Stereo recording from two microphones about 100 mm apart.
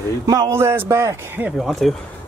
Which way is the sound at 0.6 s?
25° right (ahead or behind).